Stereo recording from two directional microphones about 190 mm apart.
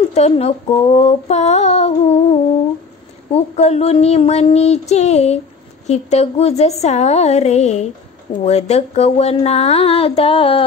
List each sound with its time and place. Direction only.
0.1 s female singing: 35° left (ahead or behind)